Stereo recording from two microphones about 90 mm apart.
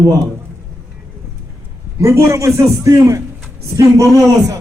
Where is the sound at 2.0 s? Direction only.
35° right (ahead or behind).